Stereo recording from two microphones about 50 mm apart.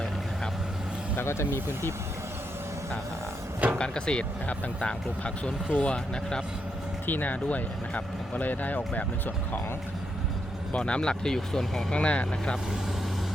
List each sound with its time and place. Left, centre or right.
1.1 s speech: left
3.7 s speech: centre
7.1 s speech: left
10.7 s speech: left; by 11.9 s centre
11.9 s speech: left